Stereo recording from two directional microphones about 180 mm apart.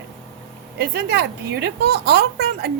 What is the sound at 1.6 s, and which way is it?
A woman's voice, 65° right (ahead or behind).